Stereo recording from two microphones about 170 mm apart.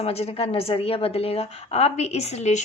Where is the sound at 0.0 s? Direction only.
35° left (ahead or behind).